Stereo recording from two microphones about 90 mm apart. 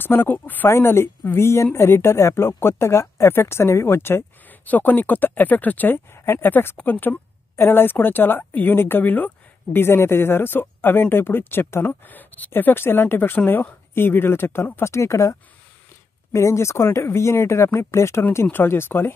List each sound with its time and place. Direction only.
0.0 s speech: 25° left (ahead or behind)
16.3 s speech: 30° left (ahead or behind)